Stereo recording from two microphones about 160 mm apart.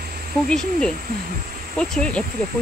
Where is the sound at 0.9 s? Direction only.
60° right (ahead or behind).